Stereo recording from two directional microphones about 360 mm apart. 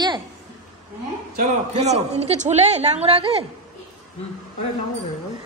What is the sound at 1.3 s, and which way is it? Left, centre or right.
A woman's voice, right.